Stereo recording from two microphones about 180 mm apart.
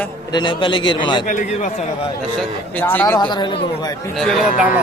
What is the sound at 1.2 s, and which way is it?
Speech, 45° left (ahead or behind).